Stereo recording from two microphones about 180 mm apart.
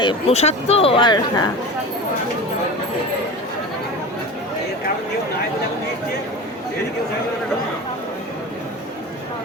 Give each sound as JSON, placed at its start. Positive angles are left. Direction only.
{"t": 0.0, "sound": "speech", "side_deg": 30}